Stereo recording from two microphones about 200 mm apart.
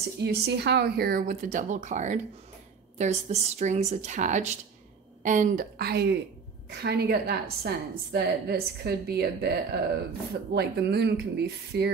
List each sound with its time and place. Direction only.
0.2 s a woman's voice: 55° right (ahead or behind)